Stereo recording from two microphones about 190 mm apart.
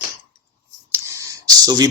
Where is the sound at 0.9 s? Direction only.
15° right (ahead or behind).